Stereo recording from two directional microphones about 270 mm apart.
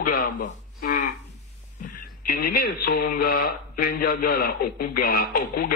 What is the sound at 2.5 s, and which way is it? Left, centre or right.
Speech, left.